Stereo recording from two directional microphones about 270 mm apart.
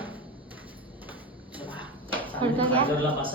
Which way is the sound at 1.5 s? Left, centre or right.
Centre.